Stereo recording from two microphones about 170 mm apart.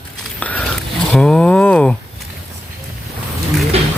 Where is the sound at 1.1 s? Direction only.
5° left (ahead or behind).